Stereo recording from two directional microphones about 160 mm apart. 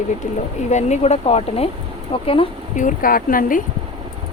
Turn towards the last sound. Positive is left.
turn(degrees=60)  # may be behind; listen again after turning